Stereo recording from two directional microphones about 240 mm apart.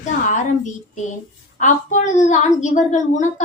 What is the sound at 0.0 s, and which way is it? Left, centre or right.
A woman's voice, left.